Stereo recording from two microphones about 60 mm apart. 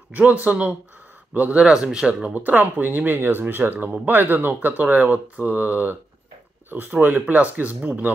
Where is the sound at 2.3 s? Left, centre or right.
Right.